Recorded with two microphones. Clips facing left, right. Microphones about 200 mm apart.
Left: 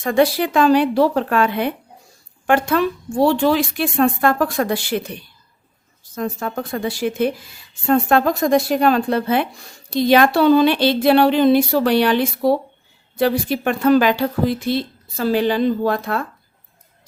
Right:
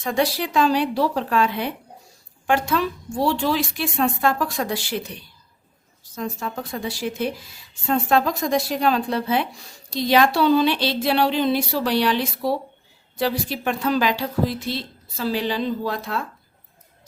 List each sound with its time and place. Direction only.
0.0 s speech: 55° left (ahead or behind)
6.1 s speech: 55° left (ahead or behind)